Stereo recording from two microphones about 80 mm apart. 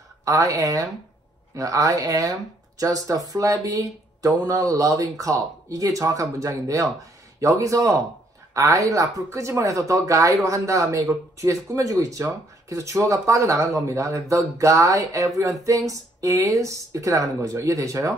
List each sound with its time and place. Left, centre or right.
0.2 s speech: right